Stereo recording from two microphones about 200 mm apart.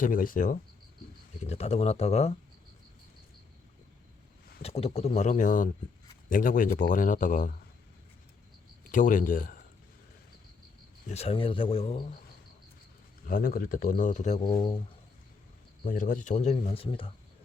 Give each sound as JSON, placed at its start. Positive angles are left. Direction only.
{"t": 0.0, "sound": "speech", "side_deg": 45}
{"t": 1.5, "sound": "speech", "side_deg": 30}
{"t": 4.6, "sound": "speech", "side_deg": 30}
{"t": 8.8, "sound": "speech", "side_deg": 45}
{"t": 11.1, "sound": "speech", "side_deg": 30}
{"t": 13.2, "sound": "speech", "side_deg": 45}
{"t": 15.8, "sound": "speech", "side_deg": 40}